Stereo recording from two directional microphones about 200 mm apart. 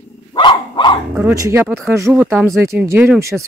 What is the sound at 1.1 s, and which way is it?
Speech, 10° right (ahead or behind).